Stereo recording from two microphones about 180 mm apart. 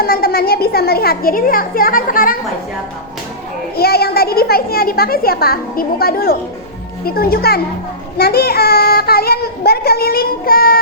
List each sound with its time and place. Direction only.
0.0 s a child's voice: 55° left (ahead or behind)
3.8 s a child's voice: 60° left (ahead or behind)